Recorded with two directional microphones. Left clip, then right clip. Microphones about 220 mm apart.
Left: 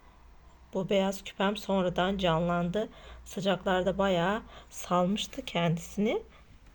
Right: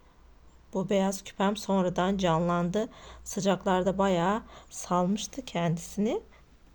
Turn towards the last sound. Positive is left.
turn(degrees=-10)  # may be behind; listen again after turning